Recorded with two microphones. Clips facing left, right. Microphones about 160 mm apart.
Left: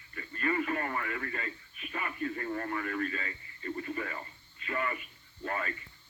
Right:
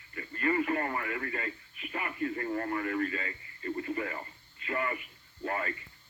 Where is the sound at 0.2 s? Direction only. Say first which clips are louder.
Right 2 dB; 25° right (ahead or behind).